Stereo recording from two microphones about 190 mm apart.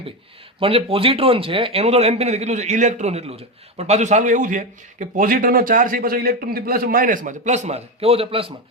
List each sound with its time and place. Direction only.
0.6 s a man's voice: 30° right (ahead or behind)